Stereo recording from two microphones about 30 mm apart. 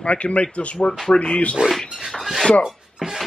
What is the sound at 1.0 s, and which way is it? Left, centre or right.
Speech, left.